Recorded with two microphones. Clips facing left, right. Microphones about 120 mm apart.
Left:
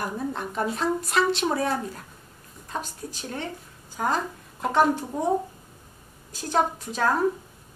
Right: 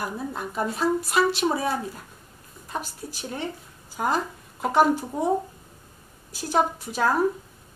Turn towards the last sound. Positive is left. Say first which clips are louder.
# right 1 dB
turn(degrees=-10)  # may be behind; listen again after turning